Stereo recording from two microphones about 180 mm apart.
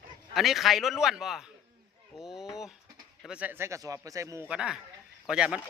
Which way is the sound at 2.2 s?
Centre (ahead or behind).